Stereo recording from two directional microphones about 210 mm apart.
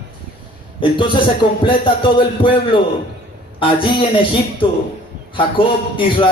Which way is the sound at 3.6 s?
25° left (ahead or behind).